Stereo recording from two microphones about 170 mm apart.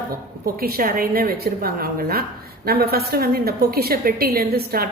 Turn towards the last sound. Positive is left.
turn(degrees=-60)  # may be behind; listen again after turning